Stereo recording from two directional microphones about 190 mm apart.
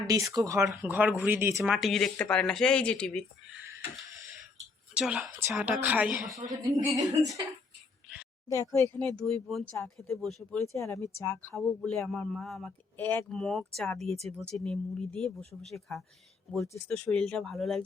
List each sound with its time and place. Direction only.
0.1 s speech: 20° right (ahead or behind); by 3.2 s 5° left (ahead or behind)
4.9 s a woman's voice: 5° right (ahead or behind)
6.5 s speech: 20° right (ahead or behind)
8.4 s speech: 15° left (ahead or behind)
9.0 s speech: centre (ahead or behind)
10.8 s speech: 15° left (ahead or behind); by 17.8 s centre (ahead or behind)